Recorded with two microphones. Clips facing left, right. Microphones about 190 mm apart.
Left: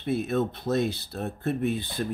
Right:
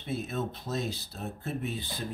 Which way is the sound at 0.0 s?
65° left (ahead or behind).